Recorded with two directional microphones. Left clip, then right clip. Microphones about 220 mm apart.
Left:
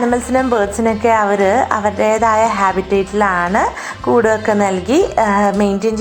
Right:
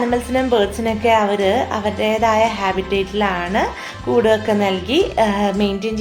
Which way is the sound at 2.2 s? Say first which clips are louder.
Left 1 dB; 10° left (ahead or behind).